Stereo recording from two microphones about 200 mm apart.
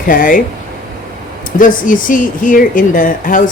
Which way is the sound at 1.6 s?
40° left (ahead or behind).